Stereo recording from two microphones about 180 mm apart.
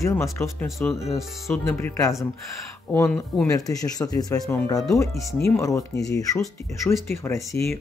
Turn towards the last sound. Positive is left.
turn(degrees=15)  # may be behind; listen again after turning